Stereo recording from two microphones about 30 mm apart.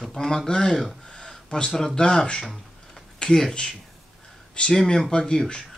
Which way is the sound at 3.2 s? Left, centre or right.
Left.